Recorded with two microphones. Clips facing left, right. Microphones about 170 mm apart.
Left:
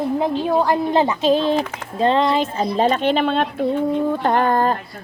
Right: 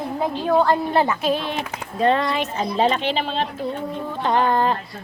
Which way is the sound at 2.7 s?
45° left (ahead or behind).